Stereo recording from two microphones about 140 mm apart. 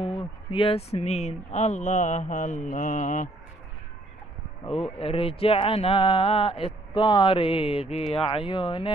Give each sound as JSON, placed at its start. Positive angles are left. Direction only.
{"t": 0.0, "sound": "speech", "side_deg": 40}
{"t": 4.6, "sound": "speech", "side_deg": 45}